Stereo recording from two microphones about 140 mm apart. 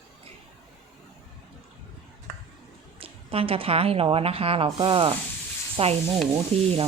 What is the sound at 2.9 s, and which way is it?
A woman's voice, 40° right (ahead or behind).